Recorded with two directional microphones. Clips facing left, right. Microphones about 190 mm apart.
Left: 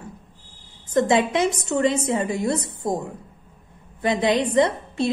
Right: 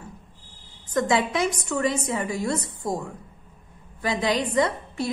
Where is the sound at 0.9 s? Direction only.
25° left (ahead or behind).